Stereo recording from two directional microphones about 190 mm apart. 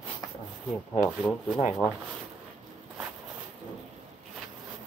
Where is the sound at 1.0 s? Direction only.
5° left (ahead or behind).